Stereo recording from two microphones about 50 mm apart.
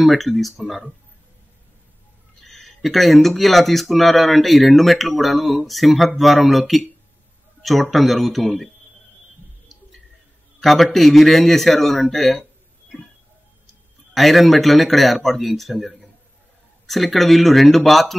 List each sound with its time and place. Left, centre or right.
0.0 s speech: centre
2.4 s speech: centre
7.6 s speech: centre
10.6 s speech: centre
14.1 s speech: centre